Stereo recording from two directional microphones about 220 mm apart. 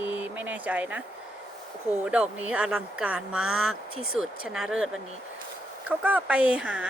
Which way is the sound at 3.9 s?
80° left.